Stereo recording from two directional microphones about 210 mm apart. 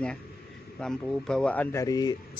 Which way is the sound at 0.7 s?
5° left (ahead or behind).